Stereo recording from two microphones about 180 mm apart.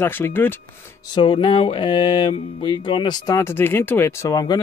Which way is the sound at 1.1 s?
30° left (ahead or behind).